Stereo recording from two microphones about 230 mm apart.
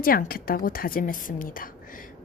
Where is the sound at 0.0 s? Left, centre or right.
Left.